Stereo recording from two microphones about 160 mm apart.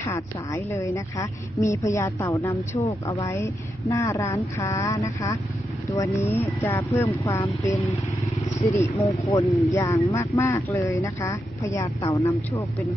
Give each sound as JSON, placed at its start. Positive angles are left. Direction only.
{"t": 0.0, "sound": "speech", "side_deg": 15}
{"t": 8.7, "sound": "speech", "side_deg": 20}